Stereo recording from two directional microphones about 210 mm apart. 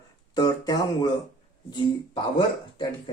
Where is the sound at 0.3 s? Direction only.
20° left (ahead or behind).